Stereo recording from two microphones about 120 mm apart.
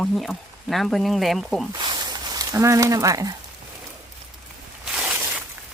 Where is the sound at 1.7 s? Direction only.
40° right (ahead or behind).